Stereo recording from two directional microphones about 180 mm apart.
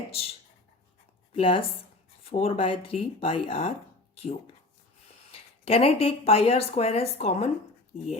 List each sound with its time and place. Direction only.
1.3 s speech: 30° left (ahead or behind)
5.3 s speech: 35° left (ahead or behind)